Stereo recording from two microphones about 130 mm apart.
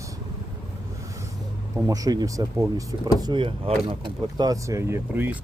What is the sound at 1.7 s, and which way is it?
Speech, 25° right (ahead or behind).